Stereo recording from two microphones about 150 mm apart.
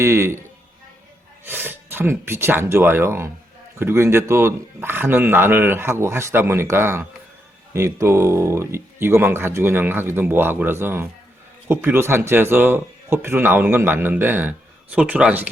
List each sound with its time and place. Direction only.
0.0 s speech: 20° right (ahead or behind)
1.5 s speech: 15° right (ahead or behind)